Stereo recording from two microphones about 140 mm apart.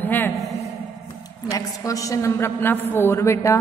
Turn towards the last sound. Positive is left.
turn(degrees=20)  # may be behind; listen again after turning